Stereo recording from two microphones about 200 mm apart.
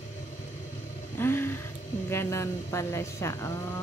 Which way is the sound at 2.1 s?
15° left (ahead or behind).